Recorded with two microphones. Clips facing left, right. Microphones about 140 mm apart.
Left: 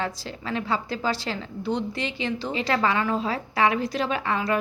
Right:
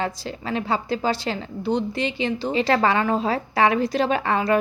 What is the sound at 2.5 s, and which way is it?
A woman's voice, 30° right (ahead or behind).